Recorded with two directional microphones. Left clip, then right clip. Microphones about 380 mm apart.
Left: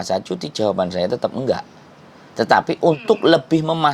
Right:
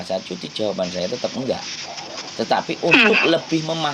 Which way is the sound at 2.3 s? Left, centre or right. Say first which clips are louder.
Left 5 dB; left.